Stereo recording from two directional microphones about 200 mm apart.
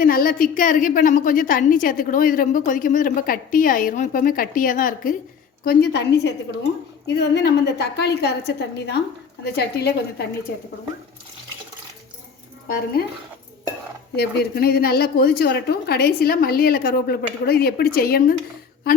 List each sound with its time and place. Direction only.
0.0 s a woman's voice: 45° left (ahead or behind)
5.6 s a woman's voice: 55° left (ahead or behind)
12.6 s a woman's voice: 45° left (ahead or behind)
14.2 s a woman's voice: 55° left (ahead or behind)